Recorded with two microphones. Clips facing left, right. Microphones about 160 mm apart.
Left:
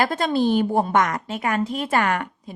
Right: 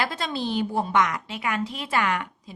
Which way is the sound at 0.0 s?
50° left (ahead or behind).